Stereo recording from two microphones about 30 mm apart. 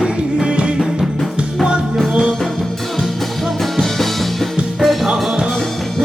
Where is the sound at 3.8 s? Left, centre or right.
Centre.